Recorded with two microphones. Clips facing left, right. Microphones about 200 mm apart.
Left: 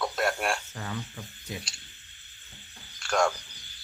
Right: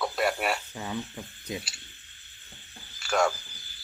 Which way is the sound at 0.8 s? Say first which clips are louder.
Right 3 dB; 15° right (ahead or behind).